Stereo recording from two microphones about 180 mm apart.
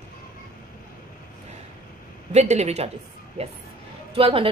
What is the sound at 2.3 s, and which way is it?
A woman's voice, 40° right (ahead or behind).